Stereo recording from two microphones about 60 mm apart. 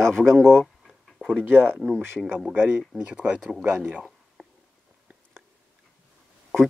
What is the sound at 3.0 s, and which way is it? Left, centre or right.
Speech, right.